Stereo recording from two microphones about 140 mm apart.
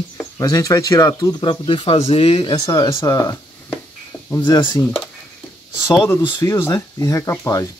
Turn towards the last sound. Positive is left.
turn(degrees=20)  # may be behind; listen again after turning